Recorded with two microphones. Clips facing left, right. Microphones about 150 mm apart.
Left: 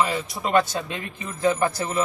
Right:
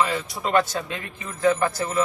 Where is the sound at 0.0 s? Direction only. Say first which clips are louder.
Even; 20° left (ahead or behind).